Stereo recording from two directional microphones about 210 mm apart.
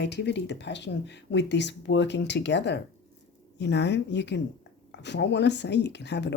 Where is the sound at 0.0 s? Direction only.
55° left (ahead or behind).